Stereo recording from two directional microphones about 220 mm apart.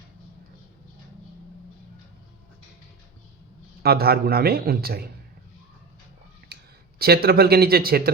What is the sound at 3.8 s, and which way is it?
Speech, 45° right (ahead or behind).